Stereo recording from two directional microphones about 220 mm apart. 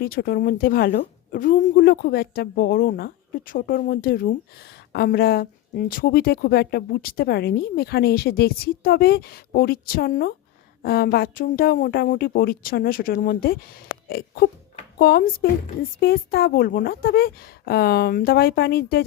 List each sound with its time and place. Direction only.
0.0 s a woman's voice: 45° left (ahead or behind)
14.1 s a sound: 45° left (ahead or behind)
14.9 s a woman's voice: 45° left (ahead or behind)